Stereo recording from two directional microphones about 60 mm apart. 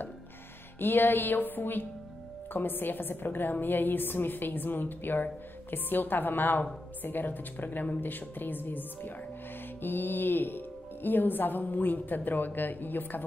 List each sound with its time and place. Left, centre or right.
0.7 s a woman's voice: left